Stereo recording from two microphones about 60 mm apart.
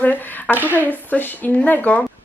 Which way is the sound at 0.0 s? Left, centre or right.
Left.